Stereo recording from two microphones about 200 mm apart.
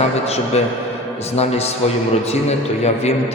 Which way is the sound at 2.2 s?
30° left (ahead or behind).